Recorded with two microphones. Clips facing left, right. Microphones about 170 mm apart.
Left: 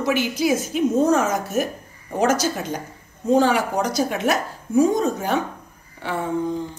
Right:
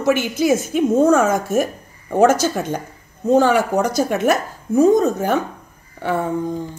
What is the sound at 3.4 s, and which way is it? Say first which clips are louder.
A woman's voice: right 4 dB; 50° right (ahead or behind).